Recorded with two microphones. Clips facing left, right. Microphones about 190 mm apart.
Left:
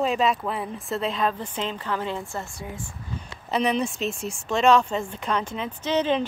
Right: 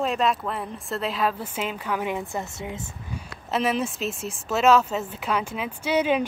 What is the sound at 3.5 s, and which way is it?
Speech, centre (ahead or behind).